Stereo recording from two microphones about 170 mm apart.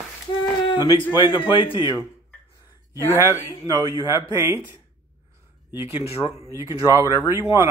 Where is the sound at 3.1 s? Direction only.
15° right (ahead or behind).